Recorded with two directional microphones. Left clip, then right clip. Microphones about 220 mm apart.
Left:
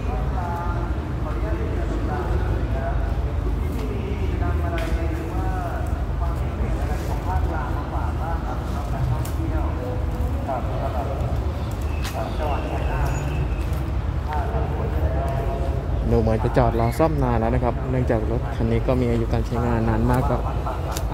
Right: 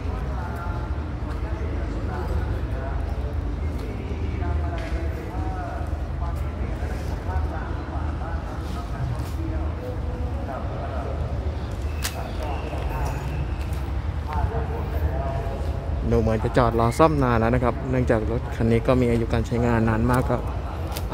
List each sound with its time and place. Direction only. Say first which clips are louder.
16.1 s speech: left 1 dB; 10° right (ahead or behind)